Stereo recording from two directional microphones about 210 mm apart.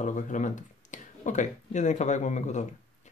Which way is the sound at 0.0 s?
35° left (ahead or behind).